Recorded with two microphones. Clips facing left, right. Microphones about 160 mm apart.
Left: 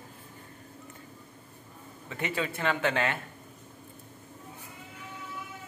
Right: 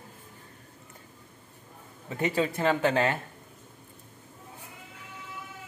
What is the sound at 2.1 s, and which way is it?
Speech, 35° right (ahead or behind).